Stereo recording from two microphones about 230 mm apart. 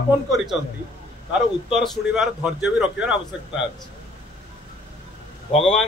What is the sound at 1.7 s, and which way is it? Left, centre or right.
A man's voice, centre.